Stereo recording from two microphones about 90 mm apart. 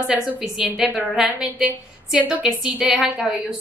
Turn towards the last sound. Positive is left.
turn(degrees=-5)  # may be behind; listen again after turning